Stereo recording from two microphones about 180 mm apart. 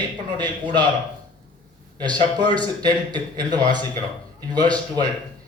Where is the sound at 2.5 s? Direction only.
25° right (ahead or behind).